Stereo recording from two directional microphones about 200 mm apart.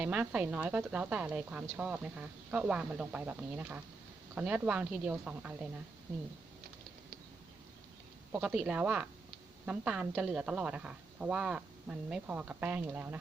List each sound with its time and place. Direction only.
0.0 s speech: 5° right (ahead or behind)
8.3 s speech: 5° right (ahead or behind)